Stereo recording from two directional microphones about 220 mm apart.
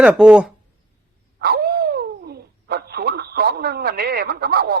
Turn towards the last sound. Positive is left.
turn(degrees=-45)  # may be behind; listen again after turning